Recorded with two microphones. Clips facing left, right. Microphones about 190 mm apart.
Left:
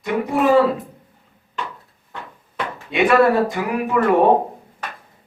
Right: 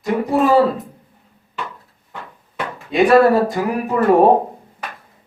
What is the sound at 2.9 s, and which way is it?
Speech, 35° right (ahead or behind).